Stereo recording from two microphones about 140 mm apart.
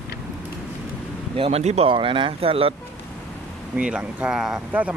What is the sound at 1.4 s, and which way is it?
Speech, 50° right (ahead or behind).